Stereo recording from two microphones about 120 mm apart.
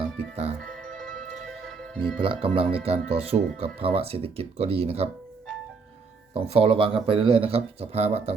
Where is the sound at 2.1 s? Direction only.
45° right (ahead or behind).